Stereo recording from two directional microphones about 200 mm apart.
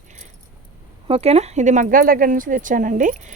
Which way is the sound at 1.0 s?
30° right (ahead or behind).